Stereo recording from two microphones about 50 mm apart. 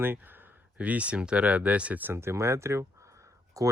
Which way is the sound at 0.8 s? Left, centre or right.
Right.